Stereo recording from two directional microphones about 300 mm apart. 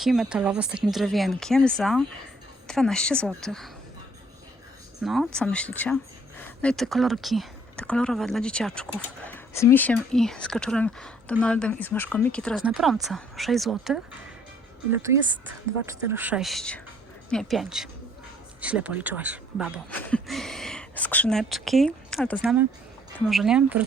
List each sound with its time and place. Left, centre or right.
0.0 s speech: centre
5.0 s speech: centre
15.0 s speech: centre